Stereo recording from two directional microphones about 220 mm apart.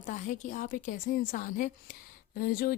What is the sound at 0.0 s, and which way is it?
A woman's voice, 35° left (ahead or behind).